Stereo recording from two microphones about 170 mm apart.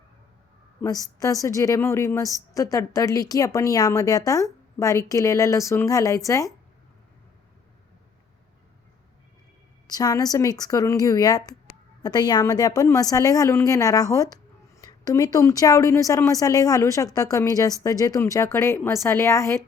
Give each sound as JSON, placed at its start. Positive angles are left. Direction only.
{"t": 0.8, "sound": "speech", "side_deg": 20}
{"t": 9.8, "sound": "speech", "side_deg": 20}